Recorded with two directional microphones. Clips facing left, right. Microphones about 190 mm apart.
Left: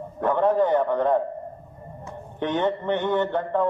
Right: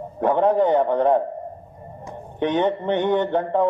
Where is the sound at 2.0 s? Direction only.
15° right (ahead or behind).